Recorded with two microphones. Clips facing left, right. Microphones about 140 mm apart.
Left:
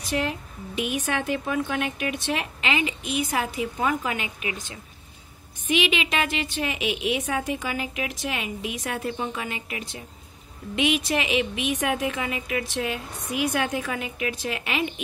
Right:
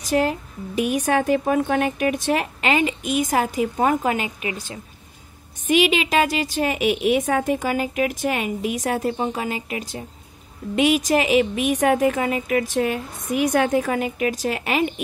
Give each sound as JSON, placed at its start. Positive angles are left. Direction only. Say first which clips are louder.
{"t": 0.0, "sound": "speech", "louder": "right 7 dB", "side_deg": -40}